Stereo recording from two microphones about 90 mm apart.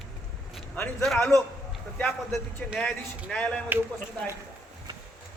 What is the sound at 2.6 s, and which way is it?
Speech, 5° left (ahead or behind).